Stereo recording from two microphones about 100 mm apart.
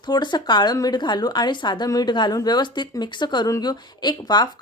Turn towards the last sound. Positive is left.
turn(degrees=45)  # may be behind; listen again after turning